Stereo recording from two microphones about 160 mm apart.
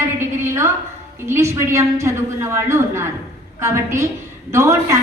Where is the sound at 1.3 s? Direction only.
15° right (ahead or behind).